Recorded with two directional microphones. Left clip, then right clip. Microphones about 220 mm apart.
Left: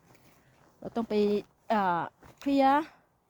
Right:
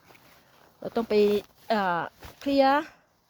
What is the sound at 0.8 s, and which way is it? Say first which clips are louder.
Speech: right 6 dB; 25° right (ahead or behind).